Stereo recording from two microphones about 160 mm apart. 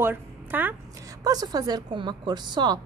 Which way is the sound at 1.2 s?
25° right (ahead or behind).